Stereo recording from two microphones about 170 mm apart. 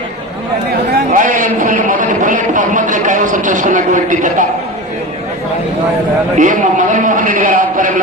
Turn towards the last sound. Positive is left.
turn(degrees=-50)  # may be behind; listen again after turning